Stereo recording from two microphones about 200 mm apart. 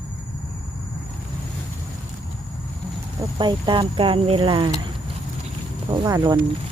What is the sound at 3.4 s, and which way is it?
Speech, 25° right (ahead or behind).